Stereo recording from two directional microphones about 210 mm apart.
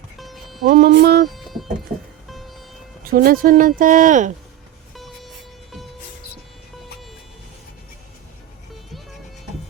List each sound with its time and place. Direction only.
0.2 s music: centre (ahead or behind)
0.6 s music: 45° right (ahead or behind)
1.3 s music: centre (ahead or behind)
2.3 s vehicle: centre (ahead or behind)
3.0 s speech: 45° right (ahead or behind)
4.9 s vehicle: centre (ahead or behind)